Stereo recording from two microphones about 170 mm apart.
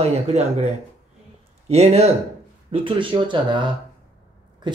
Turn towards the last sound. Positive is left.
turn(degrees=-30)  # may be behind; listen again after turning